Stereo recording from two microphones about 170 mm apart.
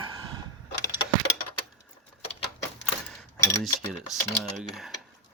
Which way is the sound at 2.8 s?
Centre (ahead or behind).